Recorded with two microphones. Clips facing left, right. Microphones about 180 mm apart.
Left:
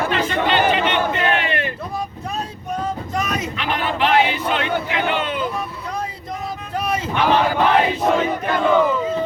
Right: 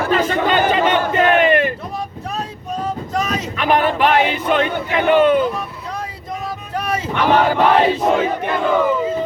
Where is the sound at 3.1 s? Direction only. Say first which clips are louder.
Right 3 dB; 45° right (ahead or behind).